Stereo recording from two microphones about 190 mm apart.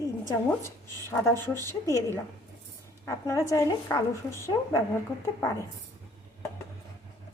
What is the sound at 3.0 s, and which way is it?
A woman's voice, 15° left (ahead or behind).